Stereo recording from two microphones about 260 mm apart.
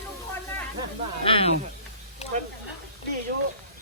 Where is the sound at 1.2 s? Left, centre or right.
Left.